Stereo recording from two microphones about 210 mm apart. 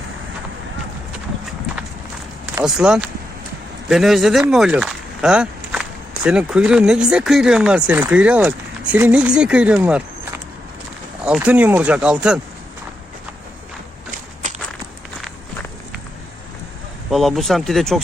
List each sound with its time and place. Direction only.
2.6 s speech: 5° right (ahead or behind)
14.4 s walk: 40° right (ahead or behind)
17.1 s speech: centre (ahead or behind)